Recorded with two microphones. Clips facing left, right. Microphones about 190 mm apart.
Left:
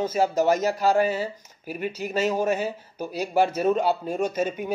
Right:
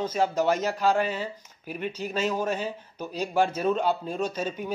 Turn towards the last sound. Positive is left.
turn(degrees=10)  # may be behind; listen again after turning